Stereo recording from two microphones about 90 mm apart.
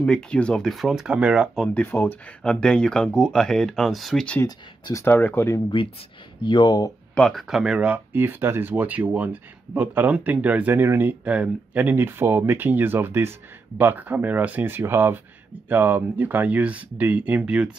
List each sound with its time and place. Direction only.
0.0 s speech: 10° left (ahead or behind); by 1.5 s 10° right (ahead or behind)
1.7 s speech: 20° left (ahead or behind)
2.4 s speech: 10° left (ahead or behind)
5.0 s speech: 25° left (ahead or behind)
6.4 s speech: 55° left (ahead or behind)
7.3 s speech: 5° right (ahead or behind)